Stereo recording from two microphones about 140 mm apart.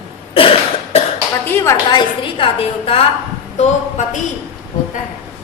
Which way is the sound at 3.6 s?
60° left (ahead or behind).